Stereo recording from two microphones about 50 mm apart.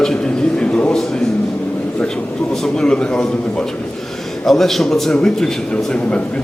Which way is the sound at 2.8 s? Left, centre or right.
Centre.